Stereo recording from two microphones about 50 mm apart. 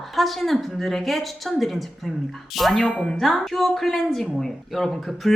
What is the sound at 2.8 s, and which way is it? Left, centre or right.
Speech, centre.